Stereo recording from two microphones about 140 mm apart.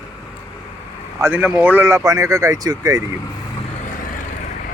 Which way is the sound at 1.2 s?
10° right (ahead or behind).